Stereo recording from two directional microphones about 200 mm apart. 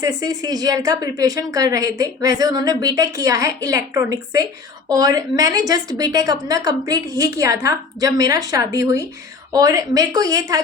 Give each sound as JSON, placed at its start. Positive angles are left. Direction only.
{"t": 0.0, "sound": "a woman's voice", "side_deg": -20}